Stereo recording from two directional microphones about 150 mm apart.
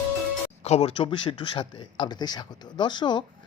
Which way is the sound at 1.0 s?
30° left (ahead or behind).